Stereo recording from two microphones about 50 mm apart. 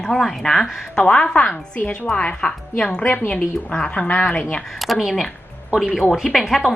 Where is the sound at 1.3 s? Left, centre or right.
Left; by 3.0 s centre.